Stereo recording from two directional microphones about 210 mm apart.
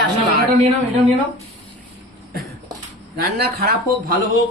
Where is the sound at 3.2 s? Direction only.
45° right (ahead or behind).